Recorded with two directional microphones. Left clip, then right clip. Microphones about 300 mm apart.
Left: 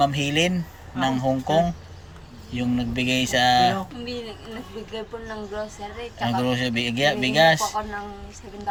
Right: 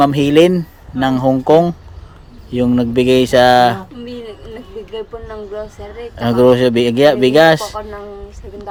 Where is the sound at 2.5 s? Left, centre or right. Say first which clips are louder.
Right 12 dB; centre.